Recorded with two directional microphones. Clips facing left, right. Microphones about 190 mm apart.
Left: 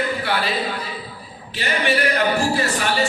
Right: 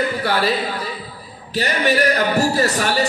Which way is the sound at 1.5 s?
40° right (ahead or behind).